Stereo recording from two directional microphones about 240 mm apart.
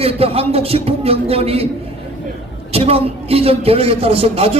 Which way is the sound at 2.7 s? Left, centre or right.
Right.